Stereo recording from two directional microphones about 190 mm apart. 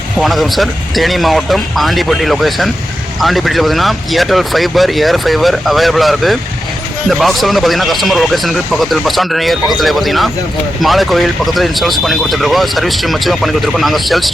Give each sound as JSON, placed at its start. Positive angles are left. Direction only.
{"t": 0.2, "sound": "speech", "side_deg": 0}